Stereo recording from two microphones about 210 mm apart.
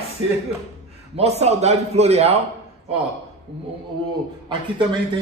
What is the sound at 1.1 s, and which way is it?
A man's voice, 30° right (ahead or behind).